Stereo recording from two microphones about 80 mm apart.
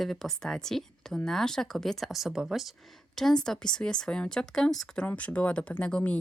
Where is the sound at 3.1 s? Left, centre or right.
Centre.